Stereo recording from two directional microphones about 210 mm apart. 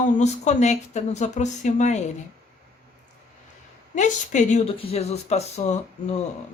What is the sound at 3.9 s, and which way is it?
Speech, 35° left (ahead or behind).